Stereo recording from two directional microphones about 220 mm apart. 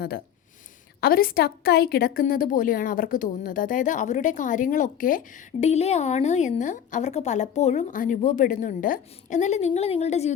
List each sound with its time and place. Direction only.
1.0 s a woman's voice: 40° left (ahead or behind)